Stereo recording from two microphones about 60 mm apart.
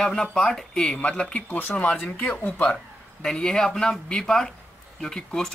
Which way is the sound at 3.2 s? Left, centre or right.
Centre.